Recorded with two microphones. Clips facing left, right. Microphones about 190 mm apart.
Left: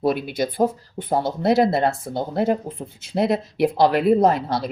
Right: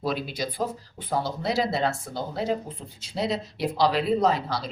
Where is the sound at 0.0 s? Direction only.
60° left (ahead or behind).